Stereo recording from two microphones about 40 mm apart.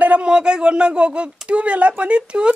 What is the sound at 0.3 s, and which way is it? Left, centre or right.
Speech, right.